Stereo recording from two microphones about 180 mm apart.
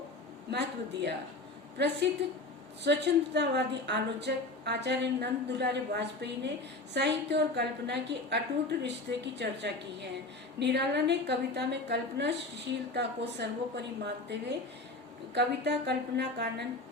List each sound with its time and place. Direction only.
0.5 s a woman's voice: 70° right (ahead or behind)
2.2 s a woman's voice: 75° right (ahead or behind)